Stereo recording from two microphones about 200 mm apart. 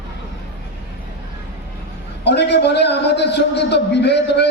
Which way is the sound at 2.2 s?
60° left (ahead or behind).